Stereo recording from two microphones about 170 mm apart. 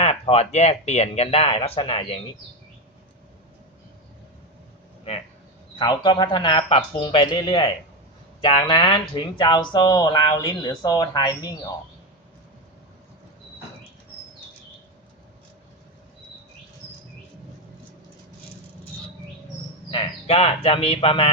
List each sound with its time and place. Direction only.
0.0 s speech: 35° left (ahead or behind)
5.8 s speech: 25° left (ahead or behind)
19.9 s speech: 35° left (ahead or behind)